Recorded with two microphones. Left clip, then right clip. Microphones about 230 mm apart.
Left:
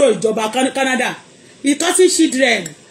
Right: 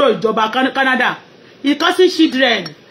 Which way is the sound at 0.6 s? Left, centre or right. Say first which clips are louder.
Right 3 dB; centre.